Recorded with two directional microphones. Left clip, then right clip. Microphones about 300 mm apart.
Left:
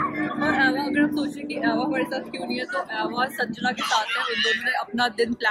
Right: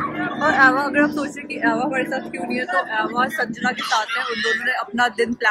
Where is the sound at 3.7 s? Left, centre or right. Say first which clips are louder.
Right 1 dB; left.